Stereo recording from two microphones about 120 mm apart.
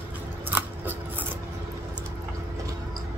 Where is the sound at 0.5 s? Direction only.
15° right (ahead or behind).